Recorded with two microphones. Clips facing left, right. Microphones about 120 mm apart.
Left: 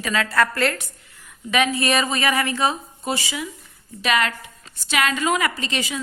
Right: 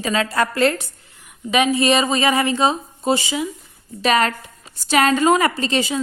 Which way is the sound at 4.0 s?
35° right (ahead or behind).